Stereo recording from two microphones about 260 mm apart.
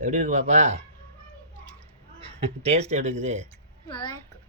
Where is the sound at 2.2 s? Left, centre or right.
Right.